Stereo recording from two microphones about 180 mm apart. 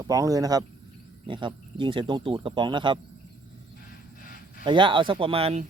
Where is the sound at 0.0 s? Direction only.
20° right (ahead or behind).